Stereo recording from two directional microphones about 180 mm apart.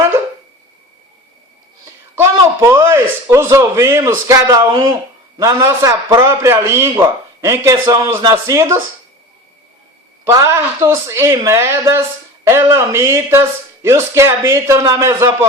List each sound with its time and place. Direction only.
1.8 s a man's voice: 15° right (ahead or behind)
10.2 s a man's voice: 15° right (ahead or behind)